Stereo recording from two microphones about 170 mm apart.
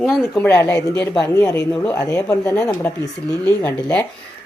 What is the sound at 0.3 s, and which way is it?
A woman's voice, 10° left (ahead or behind).